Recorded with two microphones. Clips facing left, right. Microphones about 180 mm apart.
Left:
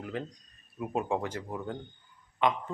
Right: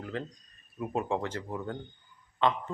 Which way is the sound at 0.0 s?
15° left (ahead or behind).